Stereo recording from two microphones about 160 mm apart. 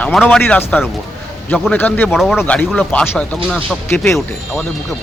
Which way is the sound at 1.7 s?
10° left (ahead or behind).